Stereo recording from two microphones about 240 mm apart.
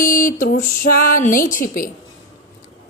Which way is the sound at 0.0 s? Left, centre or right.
Left.